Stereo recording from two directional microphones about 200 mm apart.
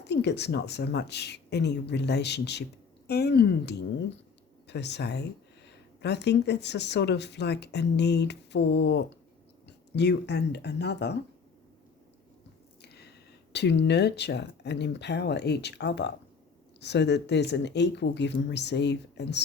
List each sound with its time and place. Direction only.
0.1 s speech: 60° left (ahead or behind)
12.8 s a sound: 55° left (ahead or behind)
13.5 s speech: 60° left (ahead or behind)